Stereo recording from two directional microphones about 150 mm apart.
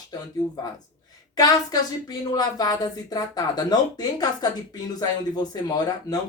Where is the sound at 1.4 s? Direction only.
25° left (ahead or behind).